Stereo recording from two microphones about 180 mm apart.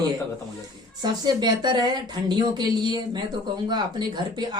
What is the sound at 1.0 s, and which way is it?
Speech, 25° right (ahead or behind).